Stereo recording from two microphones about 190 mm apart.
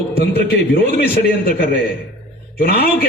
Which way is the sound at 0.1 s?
55° left (ahead or behind).